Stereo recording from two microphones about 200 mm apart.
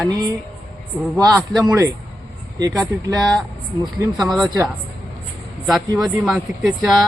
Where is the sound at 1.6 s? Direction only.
15° right (ahead or behind).